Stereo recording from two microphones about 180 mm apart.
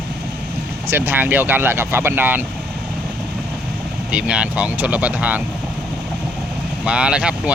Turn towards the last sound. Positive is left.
turn(degrees=-5)  # may be behind; listen again after turning